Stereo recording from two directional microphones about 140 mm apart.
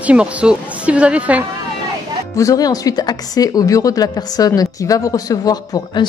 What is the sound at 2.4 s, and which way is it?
A woman's voice, 25° left (ahead or behind).